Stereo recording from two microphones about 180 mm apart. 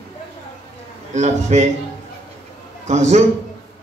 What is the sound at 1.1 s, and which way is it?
Speech, 40° right (ahead or behind).